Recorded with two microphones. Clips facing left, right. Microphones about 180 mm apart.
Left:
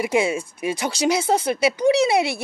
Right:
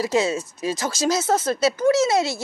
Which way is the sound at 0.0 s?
10° left (ahead or behind).